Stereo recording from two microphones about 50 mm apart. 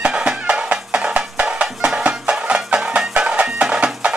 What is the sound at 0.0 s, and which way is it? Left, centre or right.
Music, centre.